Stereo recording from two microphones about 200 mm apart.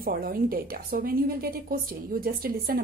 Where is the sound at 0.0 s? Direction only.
45° right (ahead or behind).